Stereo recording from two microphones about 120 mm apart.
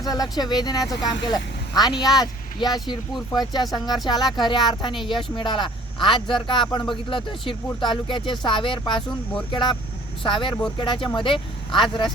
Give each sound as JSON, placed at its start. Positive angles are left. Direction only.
{"t": 0.0, "sound": "speech", "side_deg": 30}
{"t": 4.1, "sound": "speech", "side_deg": 0}
{"t": 4.4, "sound": "speech", "side_deg": 40}
{"t": 10.2, "sound": "speech", "side_deg": 45}